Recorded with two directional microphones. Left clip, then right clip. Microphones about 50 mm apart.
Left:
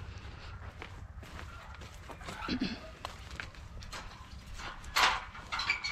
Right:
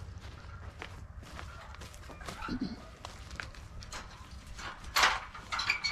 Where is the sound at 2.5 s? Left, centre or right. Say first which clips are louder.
Left 3 dB; left.